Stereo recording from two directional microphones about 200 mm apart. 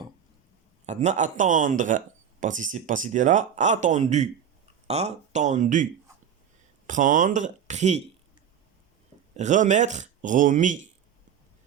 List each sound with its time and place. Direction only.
0.9 s speech: 35° right (ahead or behind)
9.3 s speech: 35° right (ahead or behind)